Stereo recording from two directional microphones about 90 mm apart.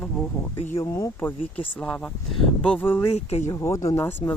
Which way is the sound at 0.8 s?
30° left (ahead or behind).